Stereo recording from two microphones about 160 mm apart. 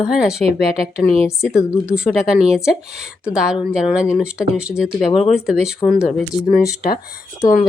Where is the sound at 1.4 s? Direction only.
5° right (ahead or behind).